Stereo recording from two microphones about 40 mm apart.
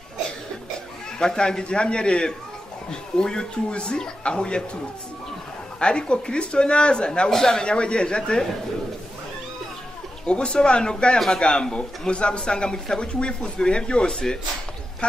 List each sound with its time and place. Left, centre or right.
1.2 s speech: centre
5.8 s speech: left
7.2 s speech: centre
10.2 s speech: left
12.7 s speech: centre
13.0 s speech: left